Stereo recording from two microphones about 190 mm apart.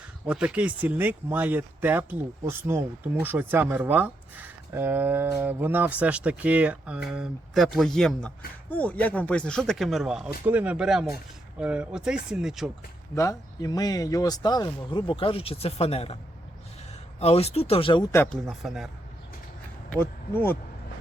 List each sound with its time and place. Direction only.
0.3 s speech: 5° right (ahead or behind)
13.1 s speech: 20° left (ahead or behind)
17.2 s speech: 30° left (ahead or behind)
18.1 s speech: 10° left (ahead or behind)
18.6 s speech: centre (ahead or behind)
19.9 s speech: 10° left (ahead or behind)